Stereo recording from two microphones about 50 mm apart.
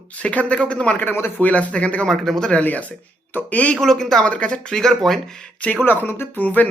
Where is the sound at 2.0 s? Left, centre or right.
Centre.